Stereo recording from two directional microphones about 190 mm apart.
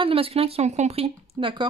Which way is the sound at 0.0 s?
30° right (ahead or behind).